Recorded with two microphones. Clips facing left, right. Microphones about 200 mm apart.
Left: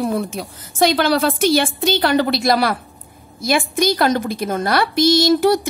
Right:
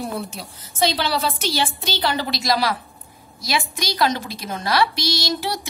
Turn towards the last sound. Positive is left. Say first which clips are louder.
# left 12 dB
turn(degrees=50)  # may be behind; listen again after turning